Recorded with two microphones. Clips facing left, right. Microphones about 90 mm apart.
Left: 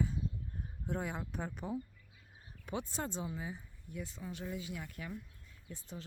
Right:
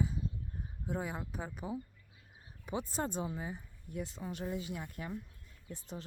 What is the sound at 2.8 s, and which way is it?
Speech, 35° right (ahead or behind).